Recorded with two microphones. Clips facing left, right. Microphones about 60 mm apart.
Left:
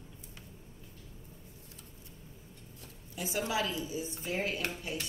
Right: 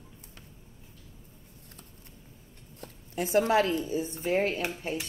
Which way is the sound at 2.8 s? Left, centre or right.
Right.